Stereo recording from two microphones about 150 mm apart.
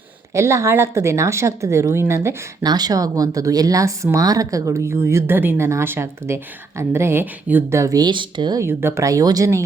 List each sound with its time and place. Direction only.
0.3 s speech: 20° right (ahead or behind)
8.6 s speech: 15° right (ahead or behind)